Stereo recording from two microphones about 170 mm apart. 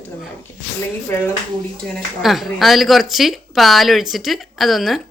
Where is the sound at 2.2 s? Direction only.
Centre (ahead or behind).